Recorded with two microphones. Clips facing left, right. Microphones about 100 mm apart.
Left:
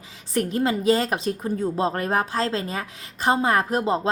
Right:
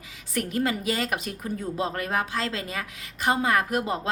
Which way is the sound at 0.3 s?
25° left (ahead or behind).